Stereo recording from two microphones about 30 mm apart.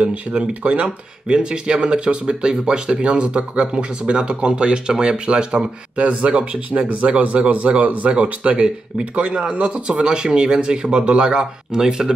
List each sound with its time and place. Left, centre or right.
0.5 s speech: right
0.8 s speech: right
7.8 s speech: right
8.2 s speech: right